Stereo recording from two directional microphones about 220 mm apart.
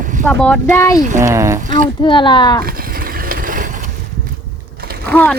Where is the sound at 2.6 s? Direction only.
40° right (ahead or behind).